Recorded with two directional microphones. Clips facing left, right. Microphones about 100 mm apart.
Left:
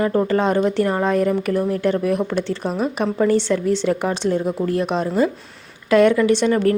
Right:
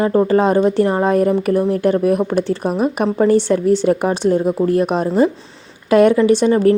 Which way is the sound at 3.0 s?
35° right (ahead or behind).